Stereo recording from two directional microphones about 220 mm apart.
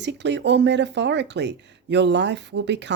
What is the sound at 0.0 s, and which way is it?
Speech, 55° right (ahead or behind).